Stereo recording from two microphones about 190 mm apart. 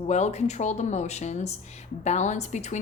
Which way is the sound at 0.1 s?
35° left (ahead or behind).